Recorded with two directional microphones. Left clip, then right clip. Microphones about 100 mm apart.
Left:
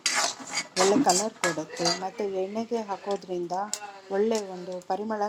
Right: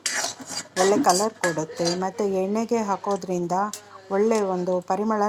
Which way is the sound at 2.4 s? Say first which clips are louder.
Right 6 dB; 15° right (ahead or behind).